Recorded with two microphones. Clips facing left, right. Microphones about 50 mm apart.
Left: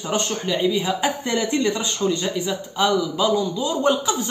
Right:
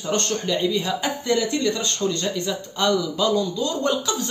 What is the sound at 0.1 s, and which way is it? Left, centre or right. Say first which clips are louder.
A woman's voice: even; centre.